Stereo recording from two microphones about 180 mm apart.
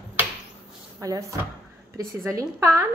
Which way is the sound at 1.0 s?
20° right (ahead or behind).